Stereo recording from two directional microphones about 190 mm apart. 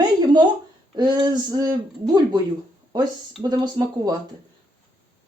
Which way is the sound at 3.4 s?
20° right (ahead or behind).